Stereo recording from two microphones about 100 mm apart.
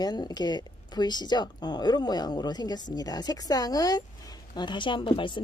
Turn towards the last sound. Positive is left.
turn(degrees=55)  # may be behind; listen again after turning